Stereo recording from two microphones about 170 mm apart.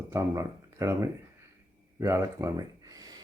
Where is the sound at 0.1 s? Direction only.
15° right (ahead or behind).